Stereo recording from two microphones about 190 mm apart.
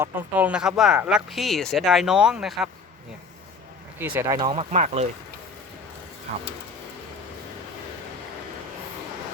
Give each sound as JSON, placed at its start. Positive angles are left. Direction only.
{"t": 0.0, "sound": "speech", "side_deg": -10}
{"t": 3.9, "sound": "speech", "side_deg": -10}
{"t": 4.4, "sound": "speech", "side_deg": -30}